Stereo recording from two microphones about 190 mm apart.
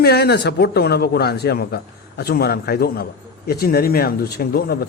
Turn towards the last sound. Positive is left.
turn(degrees=50)  # may be behind; listen again after turning